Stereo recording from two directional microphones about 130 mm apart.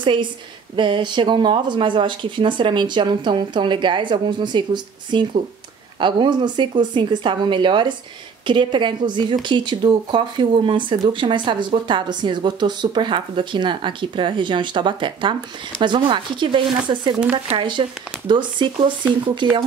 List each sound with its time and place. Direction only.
0.0 s a woman's voice: 40° right (ahead or behind)